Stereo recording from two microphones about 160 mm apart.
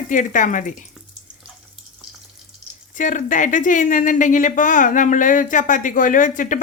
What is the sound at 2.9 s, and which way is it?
Speech, 55° left (ahead or behind).